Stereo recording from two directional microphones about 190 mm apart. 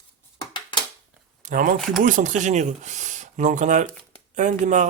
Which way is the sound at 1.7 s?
Centre (ahead or behind).